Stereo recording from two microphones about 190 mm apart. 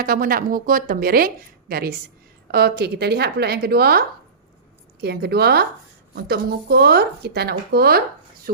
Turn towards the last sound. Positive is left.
turn(degrees=-55)  # may be behind; listen again after turning